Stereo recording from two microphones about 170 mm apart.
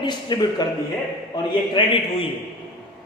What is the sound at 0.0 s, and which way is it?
Speech, 25° left (ahead or behind).